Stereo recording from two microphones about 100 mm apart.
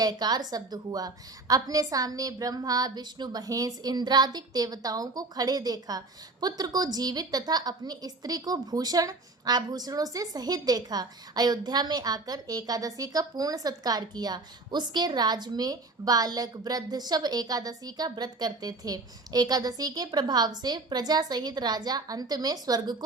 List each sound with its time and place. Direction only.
0.0 s a woman's voice: 40° right (ahead or behind)